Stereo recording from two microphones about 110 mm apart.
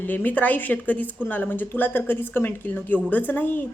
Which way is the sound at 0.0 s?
15° left (ahead or behind).